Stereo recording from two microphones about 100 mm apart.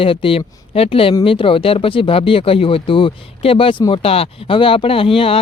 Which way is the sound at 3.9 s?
75° left (ahead or behind).